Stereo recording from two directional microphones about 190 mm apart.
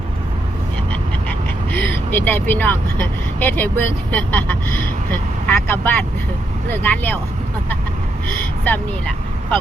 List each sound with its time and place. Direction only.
1.3 s quack: 10° left (ahead or behind)
4.1 s speech: 10° left (ahead or behind)
8.6 s speech: 10° left (ahead or behind)